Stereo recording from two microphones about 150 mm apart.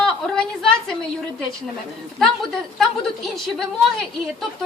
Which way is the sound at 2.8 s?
Centre (ahead or behind).